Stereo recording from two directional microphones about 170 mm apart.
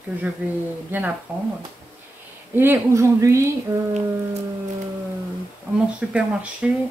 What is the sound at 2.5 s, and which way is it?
Speech, 10° right (ahead or behind).